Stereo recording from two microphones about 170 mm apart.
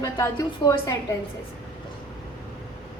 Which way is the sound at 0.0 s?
20° left (ahead or behind).